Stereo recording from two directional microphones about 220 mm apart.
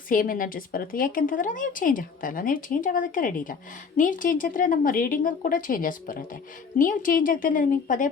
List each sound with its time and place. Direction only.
0.1 s a woman's voice: 40° left (ahead or behind)